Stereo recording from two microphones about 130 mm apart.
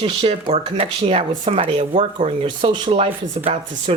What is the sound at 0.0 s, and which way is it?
Speech, 50° right (ahead or behind).